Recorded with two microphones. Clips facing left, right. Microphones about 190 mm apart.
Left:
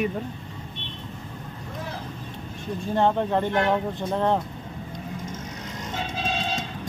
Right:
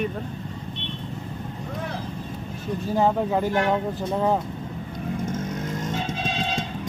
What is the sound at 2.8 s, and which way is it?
Speech, 5° right (ahead or behind).